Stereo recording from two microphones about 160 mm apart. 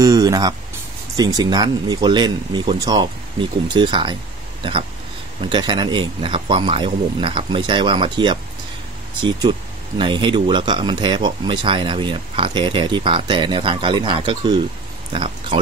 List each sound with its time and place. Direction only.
0.0 s speech: 20° right (ahead or behind)
5.4 s speech: 30° right (ahead or behind)